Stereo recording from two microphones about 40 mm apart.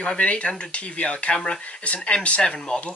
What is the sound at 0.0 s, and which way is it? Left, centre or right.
Speech, left.